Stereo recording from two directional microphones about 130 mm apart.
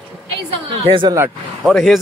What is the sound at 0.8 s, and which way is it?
Speech, 40° right (ahead or behind).